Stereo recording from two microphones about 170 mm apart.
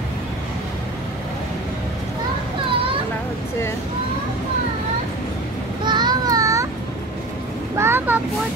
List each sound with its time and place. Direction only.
5.9 s child singing: 25° right (ahead or behind)
7.7 s vehicle: 15° right (ahead or behind)